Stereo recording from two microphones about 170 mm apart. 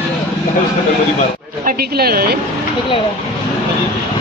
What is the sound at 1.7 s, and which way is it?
Speech, 65° right (ahead or behind).